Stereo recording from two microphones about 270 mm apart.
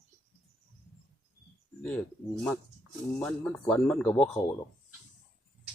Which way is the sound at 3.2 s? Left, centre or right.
Centre.